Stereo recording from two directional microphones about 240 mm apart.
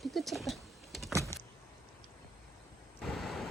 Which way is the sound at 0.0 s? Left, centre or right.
Centre.